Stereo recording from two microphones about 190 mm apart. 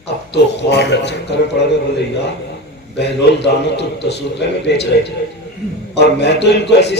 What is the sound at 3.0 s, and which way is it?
A man's voice, 65° left (ahead or behind).